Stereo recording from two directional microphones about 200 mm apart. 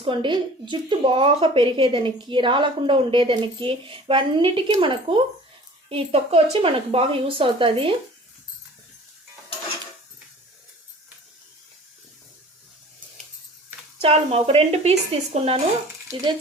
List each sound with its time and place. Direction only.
0.0 s speech: 25° right (ahead or behind)
14.0 s speech: 30° right (ahead or behind)